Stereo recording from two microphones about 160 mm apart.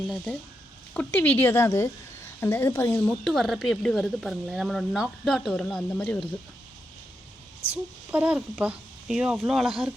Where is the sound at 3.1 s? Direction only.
Centre (ahead or behind).